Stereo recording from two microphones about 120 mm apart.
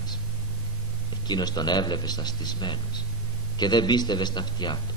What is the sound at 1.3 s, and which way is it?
Speech, 35° left (ahead or behind).